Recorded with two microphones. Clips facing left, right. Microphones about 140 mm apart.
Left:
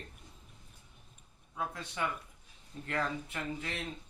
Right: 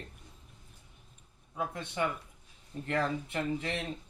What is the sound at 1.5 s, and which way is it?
Speech, 25° right (ahead or behind).